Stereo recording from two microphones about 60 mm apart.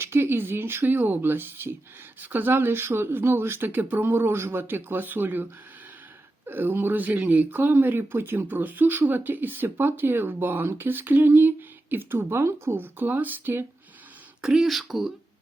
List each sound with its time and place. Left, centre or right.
0.0 s speech: right
14.4 s speech: centre